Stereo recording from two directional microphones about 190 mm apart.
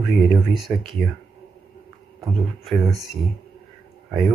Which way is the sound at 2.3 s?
Centre (ahead or behind).